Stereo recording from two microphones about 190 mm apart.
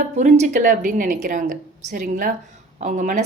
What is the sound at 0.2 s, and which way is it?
A woman's voice, 40° right (ahead or behind).